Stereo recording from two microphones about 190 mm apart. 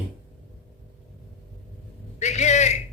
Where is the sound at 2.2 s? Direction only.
35° left (ahead or behind).